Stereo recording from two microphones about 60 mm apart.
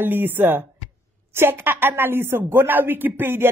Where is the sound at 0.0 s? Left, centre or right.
Right.